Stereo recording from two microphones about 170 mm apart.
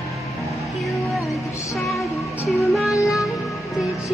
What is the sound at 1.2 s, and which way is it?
Music, 15° left (ahead or behind).